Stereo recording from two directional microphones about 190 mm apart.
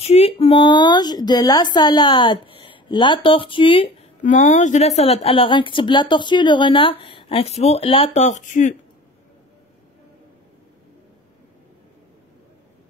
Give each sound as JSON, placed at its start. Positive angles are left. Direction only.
{"t": 0.0, "sound": "a woman's voice", "side_deg": 35}
{"t": 4.2, "sound": "a woman's voice", "side_deg": 40}